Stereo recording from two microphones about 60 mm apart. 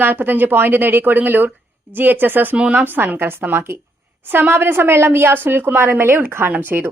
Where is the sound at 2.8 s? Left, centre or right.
Right.